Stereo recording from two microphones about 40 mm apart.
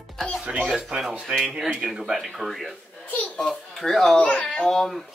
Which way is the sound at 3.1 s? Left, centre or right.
Left.